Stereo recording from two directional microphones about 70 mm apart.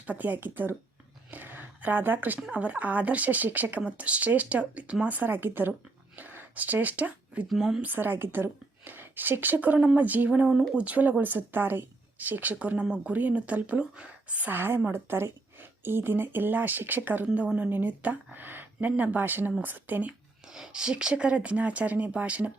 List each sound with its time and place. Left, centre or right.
0.1 s a woman's voice: right
7.4 s speech: centre
7.8 s a woman's voice: right
10.5 s speech: centre
10.8 s a woman's voice: right
17.2 s a woman's voice: centre
20.5 s a woman's voice: centre